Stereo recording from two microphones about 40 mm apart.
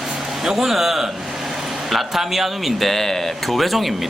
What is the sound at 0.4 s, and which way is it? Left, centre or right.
A man's voice, centre.